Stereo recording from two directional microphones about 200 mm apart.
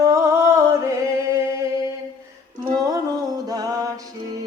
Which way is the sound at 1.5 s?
15° right (ahead or behind).